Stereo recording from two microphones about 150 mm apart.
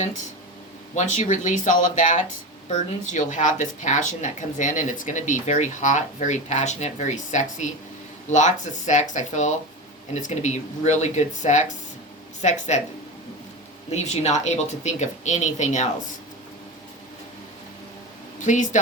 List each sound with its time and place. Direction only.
0.9 s speech: 50° left (ahead or behind)
13.9 s speech: 50° left (ahead or behind)
18.4 s speech: 55° left (ahead or behind)